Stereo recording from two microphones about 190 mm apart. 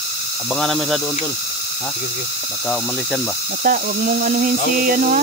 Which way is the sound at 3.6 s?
50° right (ahead or behind).